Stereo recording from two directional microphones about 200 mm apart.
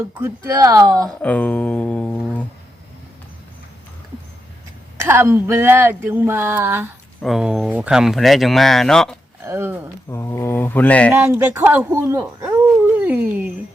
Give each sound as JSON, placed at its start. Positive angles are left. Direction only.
{"t": 0.2, "sound": "speech", "side_deg": -15}
{"t": 1.2, "sound": "speech", "side_deg": 5}
{"t": 4.9, "sound": "speech", "side_deg": -10}
{"t": 9.4, "sound": "speech", "side_deg": -15}
{"t": 10.1, "sound": "mantra", "side_deg": 15}
{"t": 11.2, "sound": "speech", "side_deg": -10}
{"t": 12.7, "sound": "dog", "side_deg": -5}